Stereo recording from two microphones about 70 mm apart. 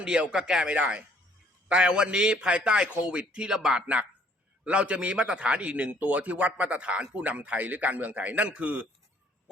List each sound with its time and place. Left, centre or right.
0.0 s a man's voice: centre